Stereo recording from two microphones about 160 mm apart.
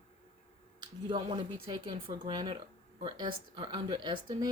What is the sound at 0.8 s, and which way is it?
Speech, 30° right (ahead or behind).